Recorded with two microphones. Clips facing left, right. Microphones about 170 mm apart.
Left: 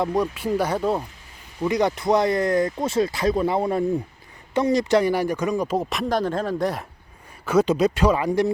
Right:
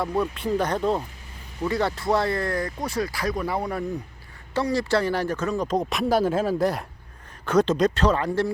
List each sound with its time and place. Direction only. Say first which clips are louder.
0.0 s speech: left 2 dB; 15° left (ahead or behind)
1.6 s speech: left 3 dB; 15° left (ahead or behind)